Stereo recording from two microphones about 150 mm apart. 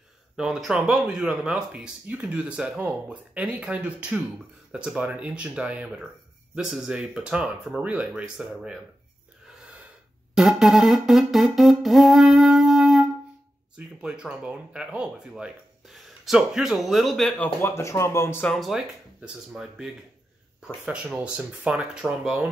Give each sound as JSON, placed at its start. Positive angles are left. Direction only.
{"t": 0.4, "sound": "speech", "side_deg": -5}
{"t": 9.6, "sound": "gasp", "side_deg": -5}
{"t": 10.3, "sound": "music", "side_deg": 0}
{"t": 13.7, "sound": "speech", "side_deg": -5}
{"t": 17.6, "sound": "speech", "side_deg": 15}
{"t": 18.5, "sound": "speech", "side_deg": 0}